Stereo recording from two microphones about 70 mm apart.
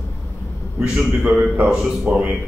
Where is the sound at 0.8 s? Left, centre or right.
Centre.